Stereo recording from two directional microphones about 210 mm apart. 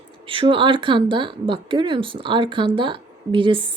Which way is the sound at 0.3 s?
25° right (ahead or behind).